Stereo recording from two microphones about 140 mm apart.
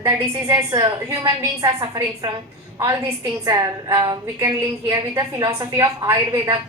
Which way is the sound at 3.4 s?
25° right (ahead or behind).